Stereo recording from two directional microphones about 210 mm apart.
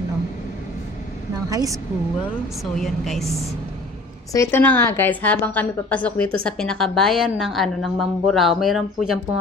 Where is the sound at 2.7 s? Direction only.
Centre (ahead or behind).